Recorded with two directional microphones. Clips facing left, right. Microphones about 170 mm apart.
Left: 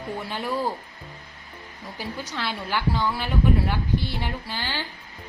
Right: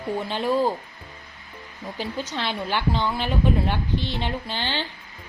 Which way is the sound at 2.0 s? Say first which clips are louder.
Right 3 dB; 20° right (ahead or behind).